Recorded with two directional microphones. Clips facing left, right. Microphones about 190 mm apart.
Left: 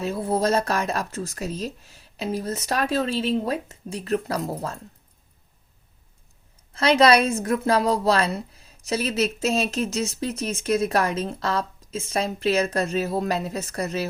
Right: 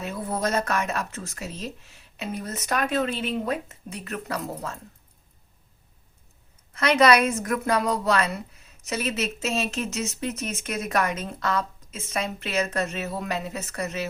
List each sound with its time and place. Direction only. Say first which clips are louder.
0.0 s a woman's voice: left 5 dB; 30° left (ahead or behind)
6.7 s a woman's voice: left 2 dB; 30° left (ahead or behind)